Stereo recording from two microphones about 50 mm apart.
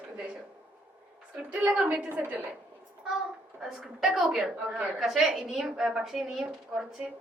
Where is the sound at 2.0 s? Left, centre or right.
Right.